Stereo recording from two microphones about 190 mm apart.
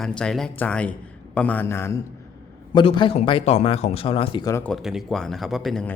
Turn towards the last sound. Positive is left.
turn(degrees=5)  # may be behind; listen again after turning